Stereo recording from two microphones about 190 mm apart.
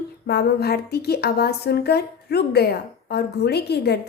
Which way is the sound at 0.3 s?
60° left (ahead or behind).